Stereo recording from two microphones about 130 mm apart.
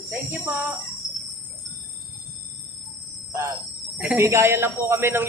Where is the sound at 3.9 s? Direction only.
10° right (ahead or behind).